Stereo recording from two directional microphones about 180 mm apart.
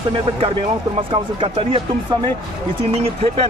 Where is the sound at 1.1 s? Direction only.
30° right (ahead or behind).